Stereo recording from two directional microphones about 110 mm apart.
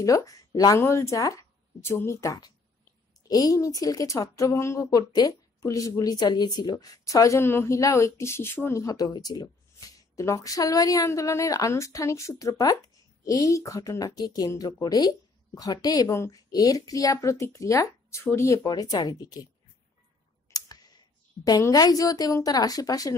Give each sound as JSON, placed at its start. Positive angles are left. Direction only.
{"t": 0.0, "sound": "speech", "side_deg": 30}
{"t": 20.4, "sound": "clicking", "side_deg": 35}
{"t": 21.5, "sound": "speech", "side_deg": 35}